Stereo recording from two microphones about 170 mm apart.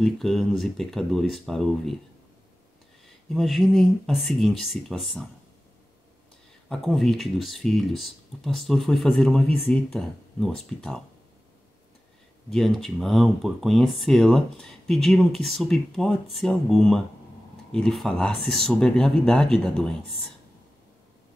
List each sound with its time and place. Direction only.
0.0 s speech: centre (ahead or behind)
3.3 s speech: centre (ahead or behind)
6.7 s speech: centre (ahead or behind)
12.4 s speech: centre (ahead or behind)